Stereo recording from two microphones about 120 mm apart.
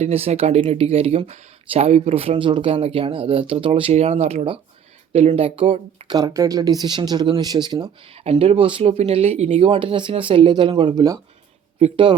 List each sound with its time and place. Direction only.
0.0 s speech: 60° right (ahead or behind)
6.1 s speech: 30° right (ahead or behind)
8.1 s speech: 55° right (ahead or behind); by 11.2 s 35° right (ahead or behind)